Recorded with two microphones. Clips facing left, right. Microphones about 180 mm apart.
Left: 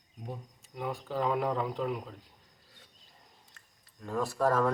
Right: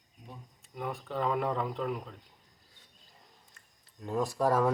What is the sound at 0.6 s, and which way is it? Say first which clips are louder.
Speech: even; centre (ahead or behind).